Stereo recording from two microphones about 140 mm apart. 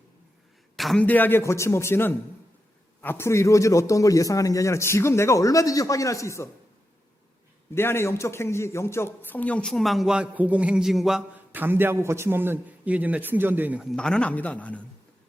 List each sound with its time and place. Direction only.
0.8 s a man's voice: centre (ahead or behind)
1.0 s a man's voice: 15° left (ahead or behind)
7.7 s a man's voice: 15° left (ahead or behind); by 11.3 s centre (ahead or behind)
11.5 s a man's voice: 15° right (ahead or behind)
13.8 s a man's voice: 5° left (ahead or behind)